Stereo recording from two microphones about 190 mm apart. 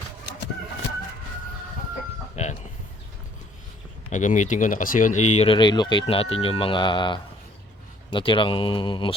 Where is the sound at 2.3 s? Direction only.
35° left (ahead or behind).